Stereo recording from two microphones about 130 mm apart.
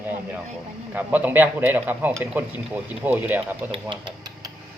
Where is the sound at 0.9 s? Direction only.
15° right (ahead or behind).